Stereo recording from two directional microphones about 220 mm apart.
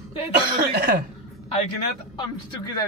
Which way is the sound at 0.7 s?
45° right (ahead or behind).